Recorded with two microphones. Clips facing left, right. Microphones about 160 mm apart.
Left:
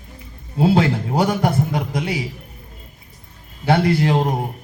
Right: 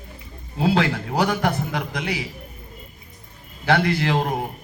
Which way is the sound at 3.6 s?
25° left (ahead or behind).